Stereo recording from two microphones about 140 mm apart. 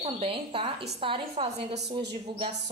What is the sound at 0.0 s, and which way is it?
A woman's voice, 40° right (ahead or behind).